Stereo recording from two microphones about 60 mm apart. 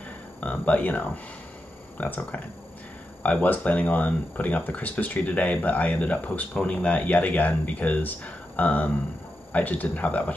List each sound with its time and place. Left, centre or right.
0.4 s speech: left